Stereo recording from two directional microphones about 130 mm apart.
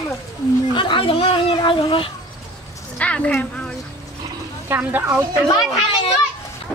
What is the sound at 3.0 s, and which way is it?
Speech, 10° left (ahead or behind).